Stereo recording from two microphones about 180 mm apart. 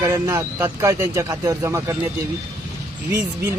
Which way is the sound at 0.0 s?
20° right (ahead or behind).